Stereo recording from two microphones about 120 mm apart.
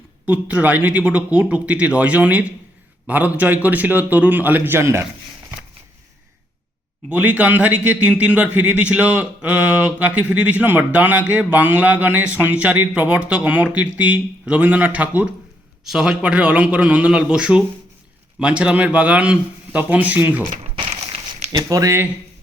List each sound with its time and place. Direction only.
0.3 s speech: 10° right (ahead or behind)
7.1 s speech: 15° right (ahead or behind)
20.7 s a sound: 60° right (ahead or behind)
21.5 s speech: 25° right (ahead or behind)